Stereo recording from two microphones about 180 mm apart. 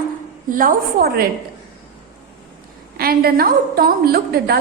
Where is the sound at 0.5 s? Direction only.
50° right (ahead or behind).